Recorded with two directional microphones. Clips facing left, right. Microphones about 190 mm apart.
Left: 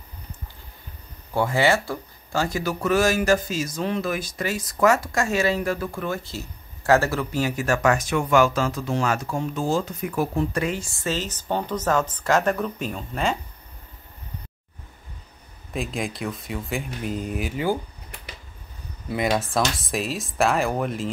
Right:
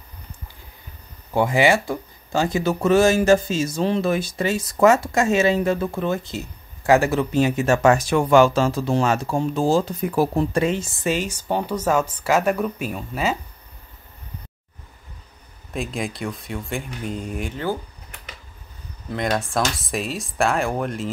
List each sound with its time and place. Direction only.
1.3 s speech: 15° right (ahead or behind)
15.7 s speech: centre (ahead or behind)
19.0 s speech: 5° left (ahead or behind)